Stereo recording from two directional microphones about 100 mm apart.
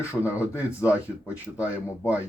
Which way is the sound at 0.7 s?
15° right (ahead or behind).